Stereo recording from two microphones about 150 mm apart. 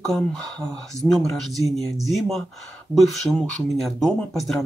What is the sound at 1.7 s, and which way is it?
Speech, centre (ahead or behind).